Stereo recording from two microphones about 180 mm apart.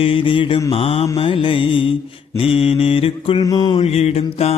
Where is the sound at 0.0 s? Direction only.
30° left (ahead or behind).